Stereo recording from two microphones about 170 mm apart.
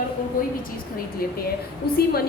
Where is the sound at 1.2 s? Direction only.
60° left (ahead or behind).